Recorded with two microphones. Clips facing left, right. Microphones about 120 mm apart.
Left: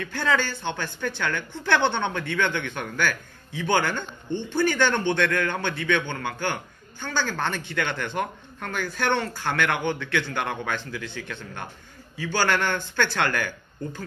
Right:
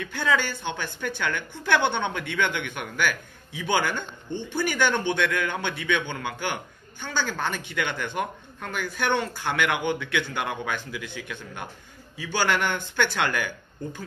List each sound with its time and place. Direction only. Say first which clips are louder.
0.0 s a woman's voice: left 1 dB; 15° right (ahead or behind)